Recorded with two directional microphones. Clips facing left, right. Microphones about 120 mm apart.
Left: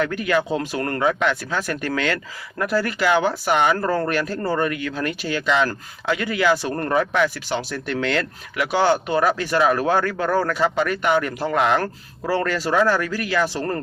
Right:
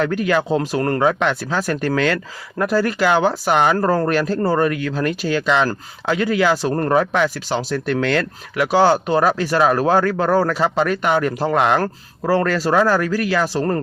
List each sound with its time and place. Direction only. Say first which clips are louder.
0.0 s speech: right 3 dB; 40° right (ahead or behind)
11.6 s speech: right 2 dB; 50° right (ahead or behind)